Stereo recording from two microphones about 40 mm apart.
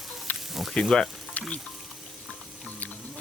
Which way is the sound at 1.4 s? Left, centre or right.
Left.